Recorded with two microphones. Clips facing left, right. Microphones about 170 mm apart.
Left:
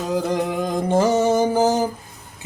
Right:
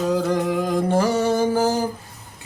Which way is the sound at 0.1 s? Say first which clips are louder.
Left 3 dB; 20° left (ahead or behind).